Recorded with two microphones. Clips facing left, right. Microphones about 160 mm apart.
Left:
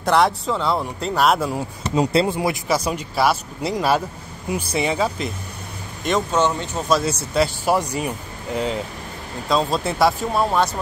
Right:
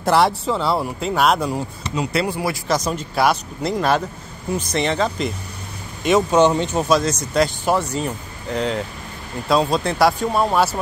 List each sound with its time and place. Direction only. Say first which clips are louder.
0.0 s speech: right 1 dB; centre (ahead or behind)
2.1 s speech: left 2 dB; 20° left (ahead or behind)
2.7 s speech: even; 10° left (ahead or behind)
6.3 s speech: right 5 dB; 20° right (ahead or behind)
6.9 s speech: left 2 dB; 5° left (ahead or behind)